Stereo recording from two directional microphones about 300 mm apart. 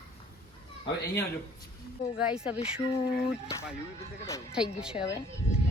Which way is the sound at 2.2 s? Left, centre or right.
Centre.